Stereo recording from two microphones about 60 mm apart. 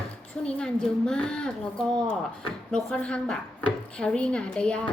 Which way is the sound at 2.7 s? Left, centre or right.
Centre.